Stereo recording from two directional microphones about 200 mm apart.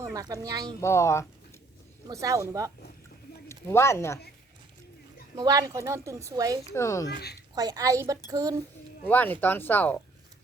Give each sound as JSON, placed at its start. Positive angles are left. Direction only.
{"t": 0.0, "sound": "speech", "side_deg": -15}
{"t": 0.8, "sound": "speech", "side_deg": 15}
{"t": 2.0, "sound": "a woman's voice", "side_deg": -15}
{"t": 3.7, "sound": "speech", "side_deg": 10}
{"t": 5.4, "sound": "a woman's voice", "side_deg": -20}
{"t": 6.7, "sound": "speech", "side_deg": 15}
{"t": 7.1, "sound": "speech", "side_deg": 55}
{"t": 7.5, "sound": "a woman's voice", "side_deg": -20}
{"t": 9.0, "sound": "speech", "side_deg": 10}